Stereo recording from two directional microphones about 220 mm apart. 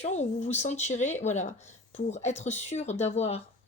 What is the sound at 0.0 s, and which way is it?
Speech, 30° left (ahead or behind).